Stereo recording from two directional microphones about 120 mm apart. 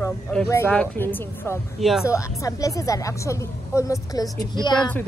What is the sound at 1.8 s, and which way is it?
Speech, centre (ahead or behind).